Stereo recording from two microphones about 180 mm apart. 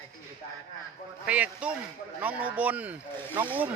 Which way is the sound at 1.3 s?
10° right (ahead or behind).